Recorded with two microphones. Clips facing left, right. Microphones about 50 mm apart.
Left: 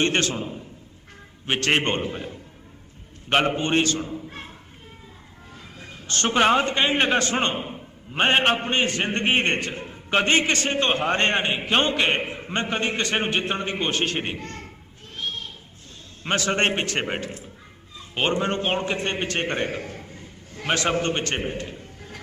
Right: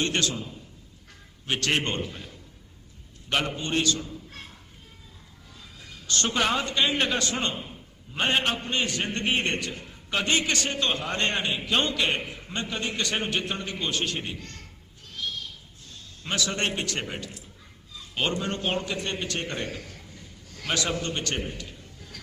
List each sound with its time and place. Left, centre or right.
0.0 s a man's voice: left
5.8 s a man's voice: left
15.1 s a sound: left
16.2 s a man's voice: left